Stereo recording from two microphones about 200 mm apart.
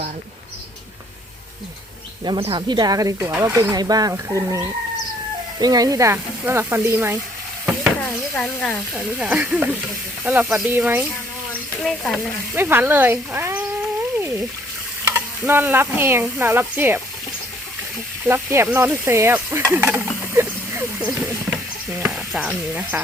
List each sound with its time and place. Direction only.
2.2 s speech: 25° right (ahead or behind)
8.0 s speech: 10° left (ahead or behind)
9.1 s speech: 10° right (ahead or behind)
11.8 s stir: centre (ahead or behind)
12.5 s speech: 10° right (ahead or behind)
15.1 s speech: 10° right (ahead or behind)
18.3 s speech: 10° right (ahead or behind)